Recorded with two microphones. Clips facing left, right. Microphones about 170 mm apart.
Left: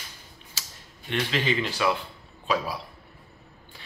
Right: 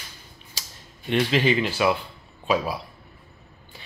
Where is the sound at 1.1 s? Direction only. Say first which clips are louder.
Right 6 dB; 15° right (ahead or behind).